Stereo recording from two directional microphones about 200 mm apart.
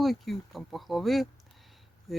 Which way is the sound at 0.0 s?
Centre (ahead or behind).